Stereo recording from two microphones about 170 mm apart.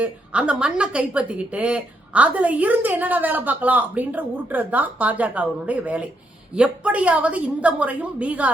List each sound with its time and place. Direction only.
0.0 s a woman's voice: 5° right (ahead or behind)